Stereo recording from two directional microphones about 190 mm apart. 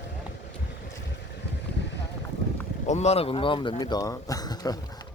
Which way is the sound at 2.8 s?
35° left (ahead or behind).